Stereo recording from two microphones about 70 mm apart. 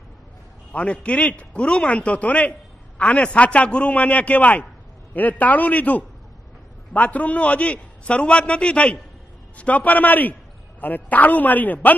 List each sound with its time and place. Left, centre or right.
0.7 s a man's voice: centre